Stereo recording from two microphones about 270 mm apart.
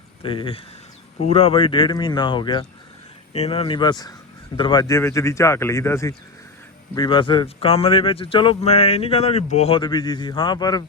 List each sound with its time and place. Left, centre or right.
0.2 s speech: centre